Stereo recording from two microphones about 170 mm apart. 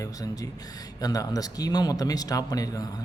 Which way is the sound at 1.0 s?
20° left (ahead or behind).